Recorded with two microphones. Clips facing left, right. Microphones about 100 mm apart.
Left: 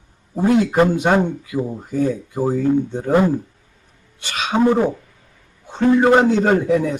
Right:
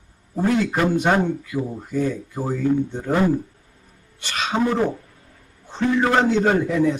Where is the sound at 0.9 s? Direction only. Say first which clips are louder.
Left 2 dB; 20° left (ahead or behind).